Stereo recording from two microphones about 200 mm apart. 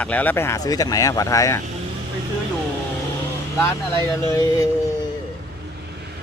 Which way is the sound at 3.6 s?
15° left (ahead or behind).